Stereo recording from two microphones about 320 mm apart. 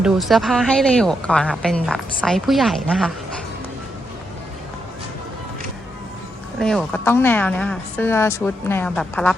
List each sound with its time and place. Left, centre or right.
0.0 s speech: centre
6.6 s speech: centre